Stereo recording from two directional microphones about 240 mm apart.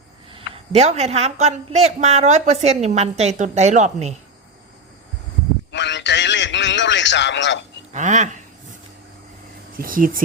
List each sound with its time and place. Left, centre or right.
0.3 s speech: right
5.7 s a sound: left
7.9 s speech: right
9.7 s speech: right